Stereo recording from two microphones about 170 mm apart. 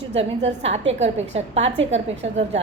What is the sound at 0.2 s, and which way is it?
A woman's voice, 40° right (ahead or behind).